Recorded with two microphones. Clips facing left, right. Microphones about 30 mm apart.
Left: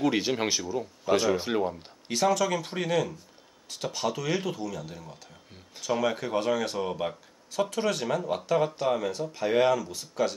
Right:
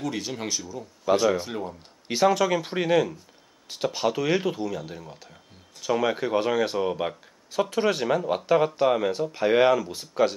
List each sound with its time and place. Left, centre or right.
0.0 s speech: left
2.0 s speech: centre